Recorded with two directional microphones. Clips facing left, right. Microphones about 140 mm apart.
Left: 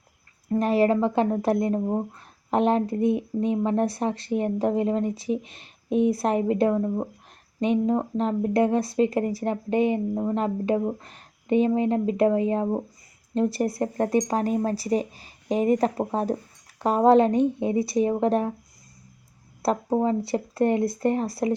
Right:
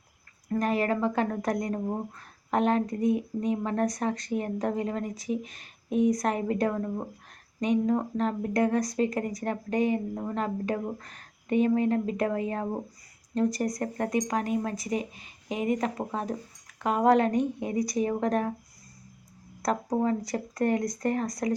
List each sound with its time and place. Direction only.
0.4 s speech: 30° left (ahead or behind)
7.6 s speech: 25° left (ahead or behind)
19.6 s speech: 25° left (ahead or behind)